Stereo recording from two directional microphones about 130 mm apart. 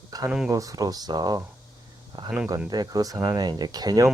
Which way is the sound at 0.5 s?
25° right (ahead or behind).